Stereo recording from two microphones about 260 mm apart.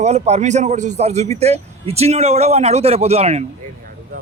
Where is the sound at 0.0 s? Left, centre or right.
Right.